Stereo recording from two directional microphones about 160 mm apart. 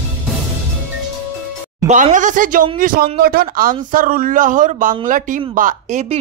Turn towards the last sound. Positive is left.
turn(degrees=-50)  # may be behind; listen again after turning